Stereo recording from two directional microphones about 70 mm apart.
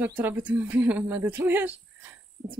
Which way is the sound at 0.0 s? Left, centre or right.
Right.